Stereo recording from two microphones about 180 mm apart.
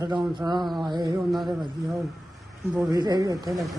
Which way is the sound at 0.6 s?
Centre (ahead or behind).